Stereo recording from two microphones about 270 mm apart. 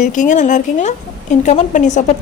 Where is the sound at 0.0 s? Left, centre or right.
Left.